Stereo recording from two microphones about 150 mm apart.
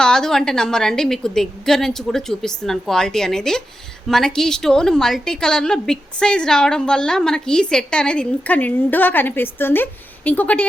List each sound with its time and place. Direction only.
0.0 s a woman's voice: 5° left (ahead or behind)